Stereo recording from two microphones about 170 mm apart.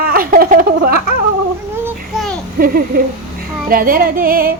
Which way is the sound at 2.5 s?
60° right (ahead or behind).